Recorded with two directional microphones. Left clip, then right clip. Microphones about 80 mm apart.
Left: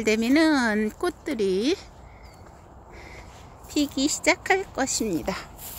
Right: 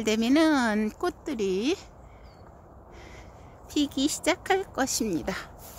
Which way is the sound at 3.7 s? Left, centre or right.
Centre.